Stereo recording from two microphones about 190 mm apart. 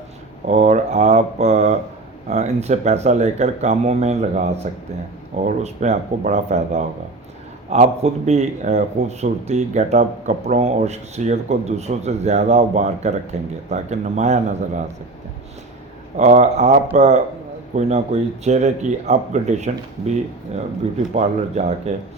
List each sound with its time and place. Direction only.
0.4 s speech: 35° right (ahead or behind)
16.1 s speech: 35° right (ahead or behind)
21.2 s speech: 35° right (ahead or behind)